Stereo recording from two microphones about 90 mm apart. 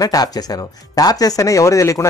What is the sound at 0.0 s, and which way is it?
Speech, 45° left (ahead or behind).